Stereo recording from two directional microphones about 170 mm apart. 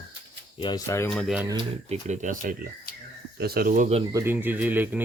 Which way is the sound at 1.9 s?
45° right (ahead or behind).